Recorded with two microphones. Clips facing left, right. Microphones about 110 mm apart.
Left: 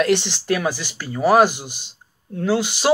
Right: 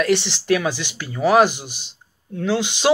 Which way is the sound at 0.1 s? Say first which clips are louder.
Right 1 dB; 15° left (ahead or behind).